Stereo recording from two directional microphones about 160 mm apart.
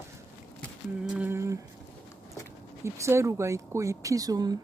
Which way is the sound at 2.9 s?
20° right (ahead or behind).